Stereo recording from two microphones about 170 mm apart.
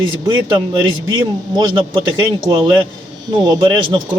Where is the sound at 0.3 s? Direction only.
25° right (ahead or behind).